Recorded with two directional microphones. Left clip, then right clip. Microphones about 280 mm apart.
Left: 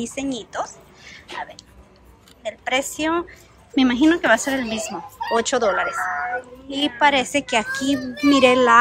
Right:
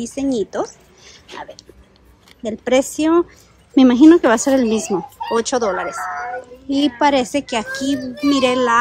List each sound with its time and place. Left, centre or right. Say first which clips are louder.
0.0 s speech: right 7 dB; centre
2.4 s a child's voice: right 6 dB; right